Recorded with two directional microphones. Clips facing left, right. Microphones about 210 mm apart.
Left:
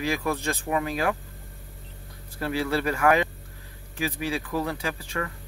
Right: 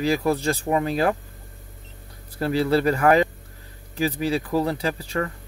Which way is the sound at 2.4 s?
35° right (ahead or behind).